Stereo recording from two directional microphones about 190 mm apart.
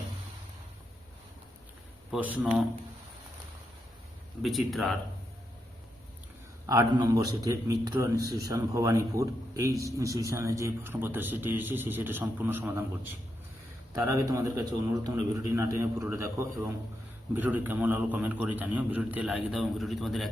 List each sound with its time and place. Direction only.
2.1 s speech: 5° right (ahead or behind)
4.4 s speech: centre (ahead or behind)
6.7 s a man's voice: 20° right (ahead or behind); by 20.3 s centre (ahead or behind)